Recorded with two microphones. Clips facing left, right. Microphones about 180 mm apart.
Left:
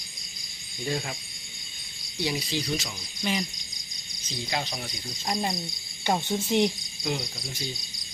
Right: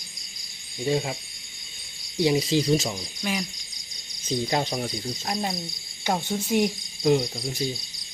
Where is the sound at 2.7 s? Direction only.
40° right (ahead or behind).